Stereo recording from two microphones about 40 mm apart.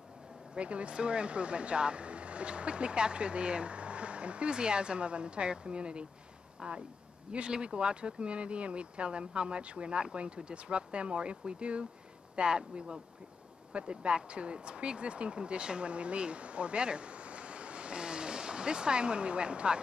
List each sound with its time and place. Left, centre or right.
0.6 s speech: right